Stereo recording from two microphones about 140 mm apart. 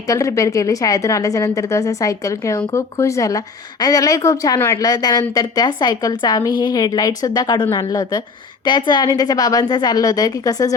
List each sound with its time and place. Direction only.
0.1 s a woman's voice: 20° left (ahead or behind)